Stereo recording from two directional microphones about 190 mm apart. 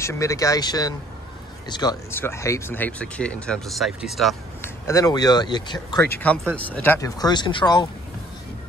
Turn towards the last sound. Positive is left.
turn(degrees=25)  # may be behind; listen again after turning